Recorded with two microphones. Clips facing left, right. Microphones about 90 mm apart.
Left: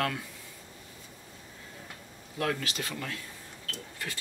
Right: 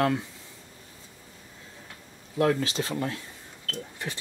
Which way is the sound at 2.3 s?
30° right (ahead or behind).